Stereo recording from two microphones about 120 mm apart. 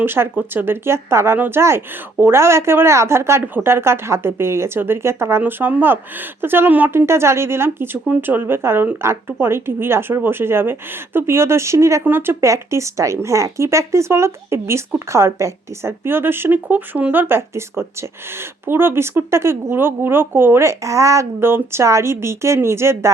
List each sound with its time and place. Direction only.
0.0 s speech: 15° right (ahead or behind)